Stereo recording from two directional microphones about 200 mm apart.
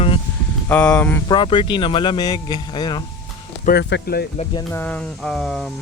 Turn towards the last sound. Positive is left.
turn(degrees=0)  # may be behind; listen again after turning